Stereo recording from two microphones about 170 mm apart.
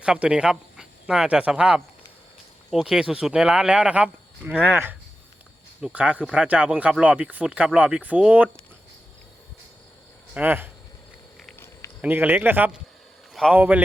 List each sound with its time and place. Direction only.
0.0 s speech: 5° right (ahead or behind)
10.3 s speech: 10° right (ahead or behind)
12.0 s speech: 10° right (ahead or behind)